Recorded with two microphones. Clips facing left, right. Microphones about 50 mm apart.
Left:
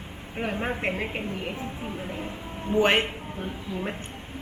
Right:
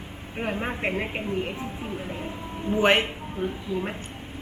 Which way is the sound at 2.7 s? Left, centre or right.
Centre.